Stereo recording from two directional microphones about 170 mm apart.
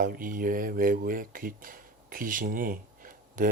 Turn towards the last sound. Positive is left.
turn(degrees=-55)  # may be behind; listen again after turning